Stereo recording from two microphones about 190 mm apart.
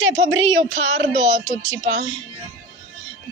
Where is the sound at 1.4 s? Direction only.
25° right (ahead or behind).